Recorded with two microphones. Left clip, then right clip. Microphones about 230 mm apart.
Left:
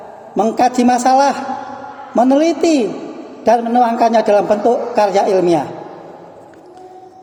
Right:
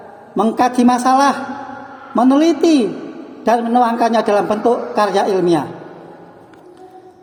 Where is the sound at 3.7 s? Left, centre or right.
Right.